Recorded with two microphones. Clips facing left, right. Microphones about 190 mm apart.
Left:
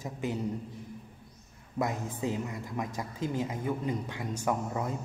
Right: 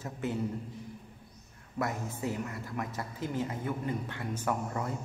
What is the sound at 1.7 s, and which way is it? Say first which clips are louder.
A man's voice: left 2 dB; 20° left (ahead or behind).